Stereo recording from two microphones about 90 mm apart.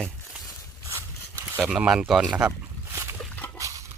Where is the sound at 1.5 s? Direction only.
10° right (ahead or behind).